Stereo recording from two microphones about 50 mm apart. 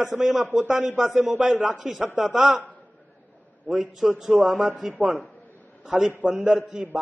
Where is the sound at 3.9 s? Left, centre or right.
Centre.